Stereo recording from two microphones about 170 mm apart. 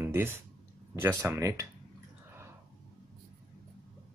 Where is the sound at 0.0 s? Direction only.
15° right (ahead or behind).